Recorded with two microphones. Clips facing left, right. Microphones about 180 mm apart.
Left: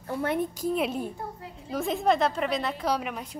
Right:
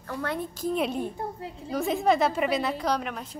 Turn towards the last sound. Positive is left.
turn(degrees=5)  # may be behind; listen again after turning